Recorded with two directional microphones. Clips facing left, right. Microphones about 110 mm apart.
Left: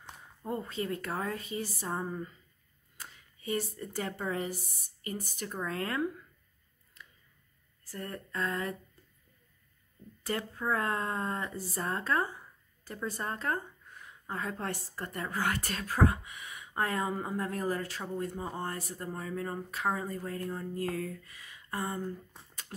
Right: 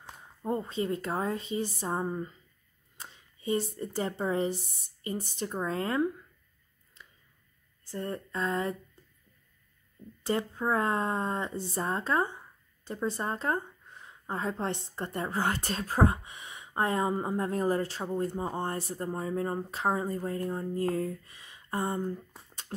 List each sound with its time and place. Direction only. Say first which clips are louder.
0.4 s speech: right 4 dB; 25° right (ahead or behind)
7.8 s speech: right 5 dB; 25° right (ahead or behind)
10.2 s speech: right 4 dB; 25° right (ahead or behind)
22.7 s dog: right 6 dB; 35° right (ahead or behind)